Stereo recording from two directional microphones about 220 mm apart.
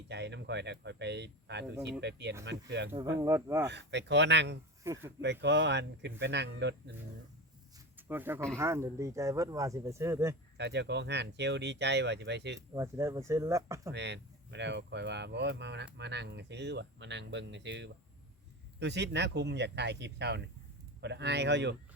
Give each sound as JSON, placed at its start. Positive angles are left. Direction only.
{"t": 0.1, "sound": "speech", "side_deg": -50}
{"t": 2.9, "sound": "speech", "side_deg": -15}
{"t": 3.7, "sound": "speech", "side_deg": -50}
{"t": 4.8, "sound": "speech", "side_deg": -15}
{"t": 5.2, "sound": "speech", "side_deg": -50}
{"t": 7.9, "sound": "speech", "side_deg": -10}
{"t": 10.6, "sound": "speech", "side_deg": -50}
{"t": 12.5, "sound": "speech", "side_deg": -15}
{"t": 13.9, "sound": "speech", "side_deg": -50}